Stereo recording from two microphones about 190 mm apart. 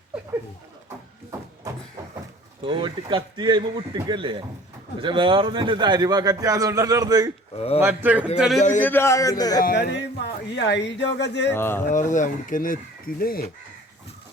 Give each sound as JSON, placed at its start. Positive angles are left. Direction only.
{"t": 2.6, "sound": "a man's voice", "side_deg": -25}
{"t": 7.5, "sound": "speech", "side_deg": 30}
{"t": 7.8, "sound": "a man's voice", "side_deg": -10}
{"t": 8.8, "sound": "a man's voice", "side_deg": 10}
{"t": 9.6, "sound": "speech", "side_deg": 60}
{"t": 11.5, "sound": "a man's voice", "side_deg": 10}
{"t": 11.9, "sound": "speech", "side_deg": 40}